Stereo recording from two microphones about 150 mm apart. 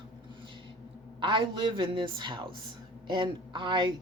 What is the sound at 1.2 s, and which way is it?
A woman's voice, 35° right (ahead or behind).